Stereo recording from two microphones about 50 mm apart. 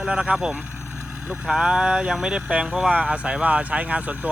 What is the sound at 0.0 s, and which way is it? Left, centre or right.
Speech, centre.